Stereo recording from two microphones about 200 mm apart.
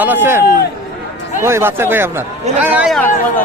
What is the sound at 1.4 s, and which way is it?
Speech, 10° right (ahead or behind).